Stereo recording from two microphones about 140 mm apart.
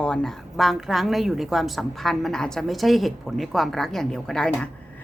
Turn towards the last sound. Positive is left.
turn(degrees=5)  # may be behind; listen again after turning